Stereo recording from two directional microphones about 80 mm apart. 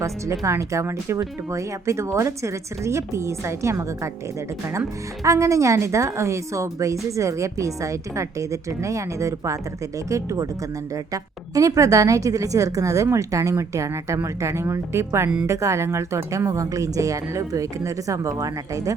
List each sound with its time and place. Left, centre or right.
0.0 s a woman's voice: right
5.2 s a woman's voice: right